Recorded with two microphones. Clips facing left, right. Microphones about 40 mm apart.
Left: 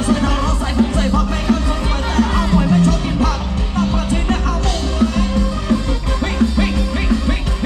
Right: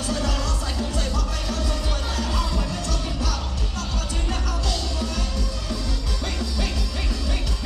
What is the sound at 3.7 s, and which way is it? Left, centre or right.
Music, left.